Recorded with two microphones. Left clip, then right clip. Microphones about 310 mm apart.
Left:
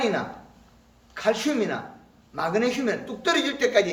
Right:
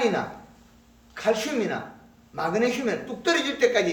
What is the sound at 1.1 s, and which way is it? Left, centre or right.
A man's voice, centre.